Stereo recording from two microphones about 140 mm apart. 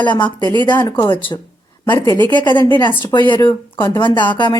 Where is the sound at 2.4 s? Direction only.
30° left (ahead or behind).